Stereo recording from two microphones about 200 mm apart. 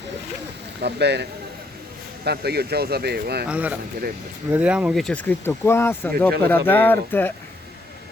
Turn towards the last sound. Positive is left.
turn(degrees=10)  # may be behind; listen again after turning